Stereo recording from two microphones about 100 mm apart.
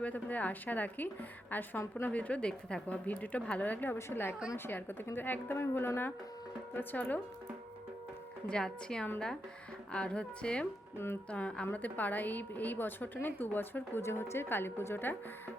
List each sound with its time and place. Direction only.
0.0 s a woman's voice: 15° left (ahead or behind)
8.4 s a woman's voice: 5° left (ahead or behind)
10.9 s a woman's voice: 25° left (ahead or behind)
11.3 s a woman's voice: 10° left (ahead or behind)